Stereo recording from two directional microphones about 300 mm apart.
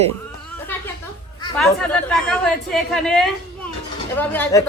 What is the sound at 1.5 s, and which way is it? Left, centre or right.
A woman's voice, centre.